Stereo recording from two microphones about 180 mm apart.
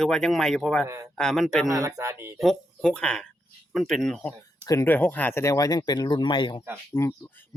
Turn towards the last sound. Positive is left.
turn(degrees=20)  # may be behind; listen again after turning